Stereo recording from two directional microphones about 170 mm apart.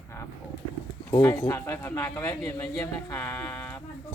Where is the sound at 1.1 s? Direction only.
20° left (ahead or behind).